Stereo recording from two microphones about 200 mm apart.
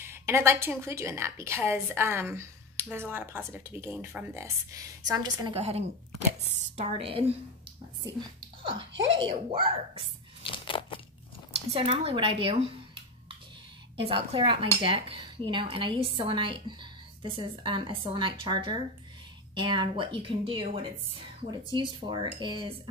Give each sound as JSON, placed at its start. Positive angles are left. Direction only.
{"t": 0.0, "sound": "a woman's voice", "side_deg": -10}
{"t": 9.1, "sound": "a woman's voice", "side_deg": -25}
{"t": 10.4, "sound": "a sound", "side_deg": 25}
{"t": 11.7, "sound": "a woman's voice", "side_deg": -30}
{"t": 13.9, "sound": "a woman's voice", "side_deg": -25}